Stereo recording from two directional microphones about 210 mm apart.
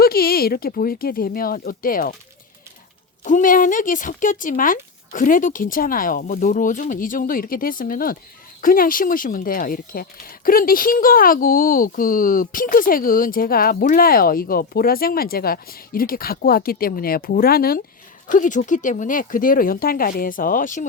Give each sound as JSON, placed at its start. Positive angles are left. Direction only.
{"t": 0.0, "sound": "speech", "side_deg": 45}
{"t": 3.2, "sound": "speech", "side_deg": 40}